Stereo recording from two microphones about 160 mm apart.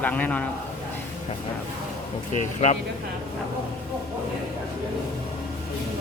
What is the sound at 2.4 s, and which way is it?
Speech, 45° left (ahead or behind).